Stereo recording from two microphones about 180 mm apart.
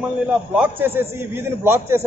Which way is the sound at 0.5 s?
10° right (ahead or behind).